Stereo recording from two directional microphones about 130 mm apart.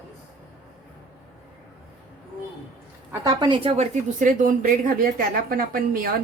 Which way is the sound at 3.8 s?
90° right.